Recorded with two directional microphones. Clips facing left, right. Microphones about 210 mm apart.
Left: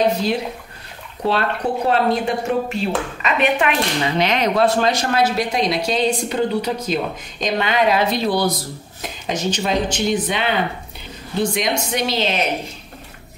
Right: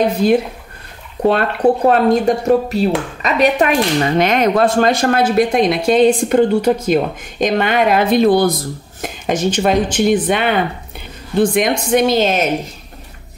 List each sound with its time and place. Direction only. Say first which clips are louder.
0.2 s speech: right 8 dB; 50° right (ahead or behind)